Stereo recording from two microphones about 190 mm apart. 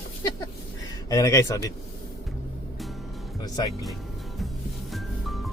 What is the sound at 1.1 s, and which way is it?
Speech, 15° left (ahead or behind).